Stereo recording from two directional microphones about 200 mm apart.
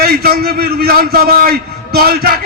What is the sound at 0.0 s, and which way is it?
A man's voice, 50° right (ahead or behind).